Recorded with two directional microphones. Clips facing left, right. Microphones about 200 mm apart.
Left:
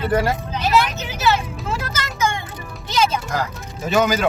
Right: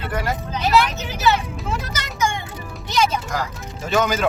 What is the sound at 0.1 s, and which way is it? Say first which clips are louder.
Speech: left 5 dB; 30° left (ahead or behind).